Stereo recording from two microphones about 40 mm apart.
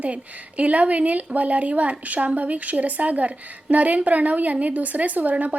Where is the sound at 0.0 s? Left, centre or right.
Right.